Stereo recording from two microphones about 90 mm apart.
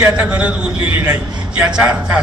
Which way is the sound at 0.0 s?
15° right (ahead or behind).